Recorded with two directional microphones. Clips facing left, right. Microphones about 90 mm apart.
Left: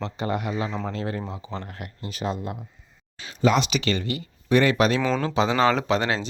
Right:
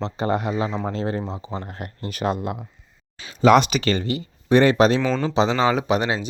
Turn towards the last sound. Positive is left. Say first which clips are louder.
# right 2 dB
turn(degrees=-15)  # may be behind; listen again after turning